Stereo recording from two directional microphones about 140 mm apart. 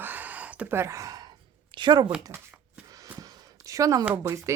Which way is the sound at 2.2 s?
15° right (ahead or behind).